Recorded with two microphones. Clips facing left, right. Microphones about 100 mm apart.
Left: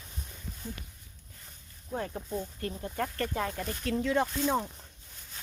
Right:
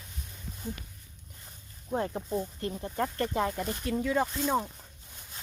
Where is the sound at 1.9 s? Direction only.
25° right (ahead or behind); by 4.8 s 5° right (ahead or behind).